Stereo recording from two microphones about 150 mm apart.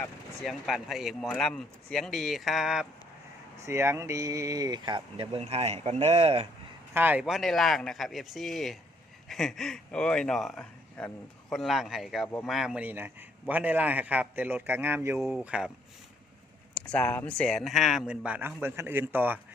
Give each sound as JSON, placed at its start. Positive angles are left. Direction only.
{"t": 0.4, "sound": "speech", "side_deg": 0}
{"t": 3.6, "sound": "speech", "side_deg": -20}
{"t": 6.9, "sound": "a man's voice", "side_deg": -10}
{"t": 16.7, "sound": "speech", "side_deg": 5}